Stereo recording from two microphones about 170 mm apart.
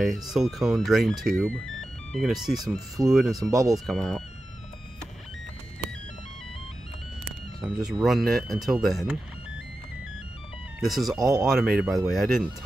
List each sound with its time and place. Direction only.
0.0 s speech: centre (ahead or behind)
3.4 s speech: 20° right (ahead or behind)
3.7 s speech: centre (ahead or behind)
8.0 s speech: centre (ahead or behind)
10.8 s speech: centre (ahead or behind)